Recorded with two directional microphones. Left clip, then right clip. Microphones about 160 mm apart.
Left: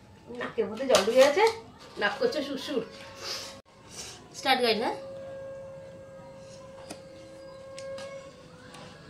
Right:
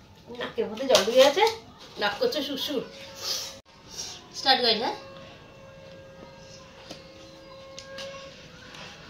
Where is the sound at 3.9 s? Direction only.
20° left (ahead or behind).